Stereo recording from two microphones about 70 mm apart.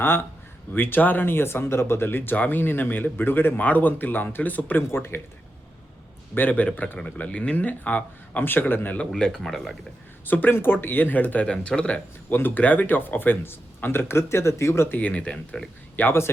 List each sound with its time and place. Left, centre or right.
0.0 s speech: left
6.3 s speech: left
9.0 s speech: centre
10.2 s speech: left
11.4 s speech: centre; by 14.9 s left
14.9 s speech: left
16.0 s speech: left